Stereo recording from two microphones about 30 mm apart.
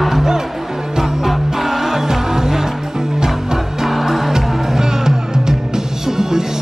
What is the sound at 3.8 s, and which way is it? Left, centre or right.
Music, centre.